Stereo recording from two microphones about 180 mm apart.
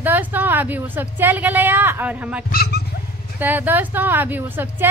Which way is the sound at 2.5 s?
60° left (ahead or behind).